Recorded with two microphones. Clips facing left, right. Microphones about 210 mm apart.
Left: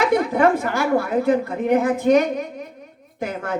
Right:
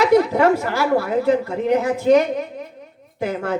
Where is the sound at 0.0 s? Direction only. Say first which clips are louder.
Right 3 dB; 50° left (ahead or behind).